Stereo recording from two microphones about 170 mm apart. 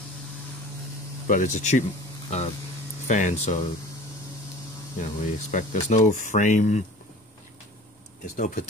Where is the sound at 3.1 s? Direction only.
45° left (ahead or behind).